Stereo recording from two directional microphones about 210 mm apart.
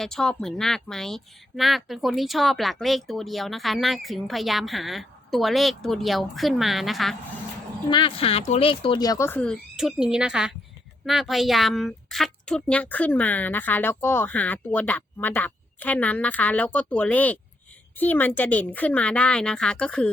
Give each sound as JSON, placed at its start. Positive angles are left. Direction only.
{"t": 0.0, "sound": "speech", "side_deg": 0}
{"t": 7.9, "sound": "a woman's voice", "side_deg": 25}